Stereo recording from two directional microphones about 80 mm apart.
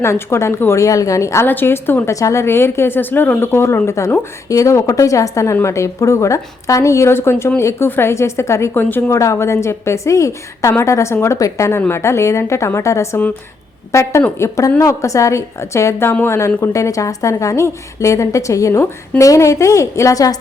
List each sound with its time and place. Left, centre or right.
0.0 s a woman's voice: left
1.5 s a woman's voice: left
2.1 s a woman's voice: left
8.7 s a woman's voice: left
9.0 s a woman's voice: left